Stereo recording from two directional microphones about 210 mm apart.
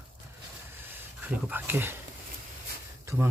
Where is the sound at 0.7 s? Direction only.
10° right (ahead or behind).